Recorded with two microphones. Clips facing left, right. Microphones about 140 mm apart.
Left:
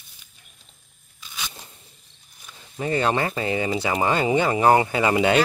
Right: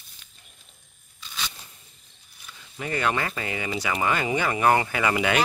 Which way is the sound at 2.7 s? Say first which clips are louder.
Left 4 dB; 30° left (ahead or behind).